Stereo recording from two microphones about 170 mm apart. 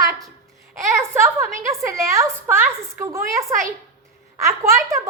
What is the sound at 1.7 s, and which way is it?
A woman's voice, 15° right (ahead or behind).